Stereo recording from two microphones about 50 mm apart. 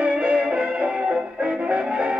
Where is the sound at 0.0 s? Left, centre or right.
Right.